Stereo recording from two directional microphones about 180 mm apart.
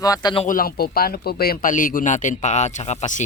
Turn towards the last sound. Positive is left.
turn(degrees=40)  # may be behind; listen again after turning